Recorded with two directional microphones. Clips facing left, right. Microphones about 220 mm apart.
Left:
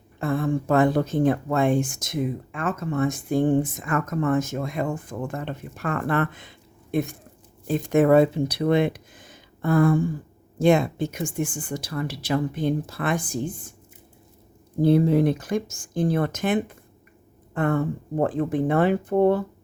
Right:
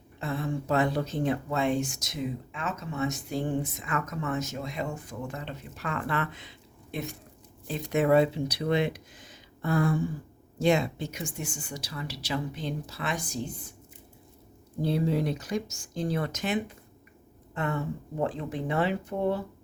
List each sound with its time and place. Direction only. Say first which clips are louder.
0.2 s speech: left 8 dB; 50° left (ahead or behind)
14.8 s speech: left 9 dB; 50° left (ahead or behind)